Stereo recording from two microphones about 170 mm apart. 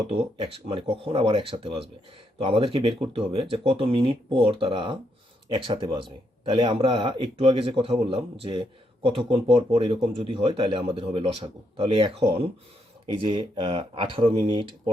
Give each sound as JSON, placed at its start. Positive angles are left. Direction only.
{"t": 0.1, "sound": "a man's voice", "side_deg": -35}